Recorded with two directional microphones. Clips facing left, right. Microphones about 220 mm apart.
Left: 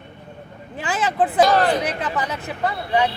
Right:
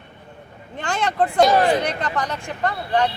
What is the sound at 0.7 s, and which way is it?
Speech, 5° left (ahead or behind).